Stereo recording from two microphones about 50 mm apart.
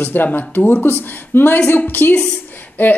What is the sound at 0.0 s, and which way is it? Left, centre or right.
Speech, left.